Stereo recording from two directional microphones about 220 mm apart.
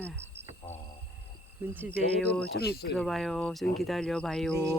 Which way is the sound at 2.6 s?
45° left (ahead or behind).